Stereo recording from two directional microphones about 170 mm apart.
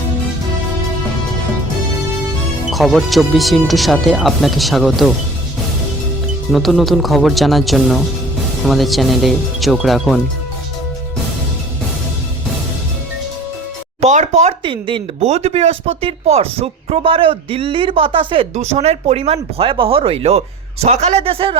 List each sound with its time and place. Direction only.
2.7 s speech: centre (ahead or behind)
6.5 s speech: centre (ahead or behind)
14.0 s a sound: 40° right (ahead or behind)
14.6 s speech: 30° right (ahead or behind)